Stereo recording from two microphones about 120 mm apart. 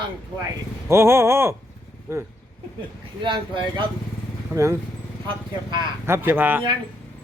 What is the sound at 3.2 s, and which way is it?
Speech, 40° right (ahead or behind).